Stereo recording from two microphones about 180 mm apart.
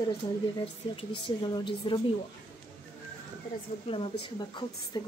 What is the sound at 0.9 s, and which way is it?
Speech, 25° left (ahead or behind).